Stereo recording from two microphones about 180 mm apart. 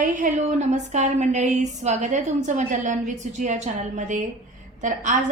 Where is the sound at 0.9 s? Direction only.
40° right (ahead or behind).